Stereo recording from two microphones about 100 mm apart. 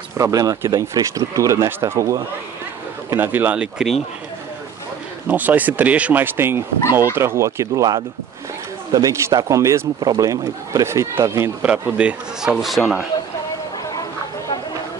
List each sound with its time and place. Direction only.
0.2 s speech: 35° right (ahead or behind)
3.1 s speech: 20° right (ahead or behind)
5.3 s speech: 15° right (ahead or behind)
11.6 s speech: 15° right (ahead or behind)